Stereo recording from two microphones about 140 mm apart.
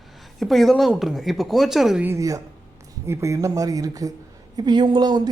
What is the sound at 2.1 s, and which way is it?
A woman's voice, 25° right (ahead or behind).